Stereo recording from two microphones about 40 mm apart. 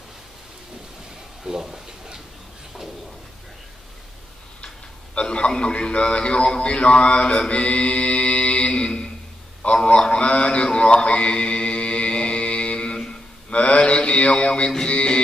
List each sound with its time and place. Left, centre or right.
1.4 s a sound: centre
5.2 s a man's voice: left
9.8 s mantra: left
14.9 s music: left